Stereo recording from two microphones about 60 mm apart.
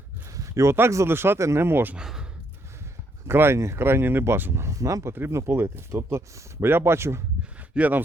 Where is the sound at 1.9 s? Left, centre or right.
Centre.